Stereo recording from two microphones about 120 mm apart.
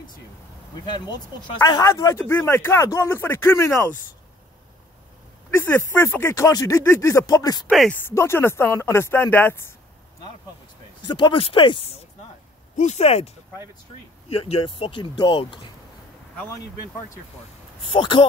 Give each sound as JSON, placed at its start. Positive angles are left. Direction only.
{"t": 0.9, "sound": "speech", "side_deg": 35}
{"t": 5.6, "sound": "speech", "side_deg": 20}
{"t": 11.1, "sound": "speech", "side_deg": 40}
{"t": 12.7, "sound": "speech", "side_deg": 75}
{"t": 14.3, "sound": "speech", "side_deg": 50}
{"t": 17.9, "sound": "speech", "side_deg": 45}